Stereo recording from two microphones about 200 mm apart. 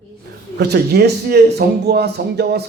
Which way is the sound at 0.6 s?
55° right (ahead or behind).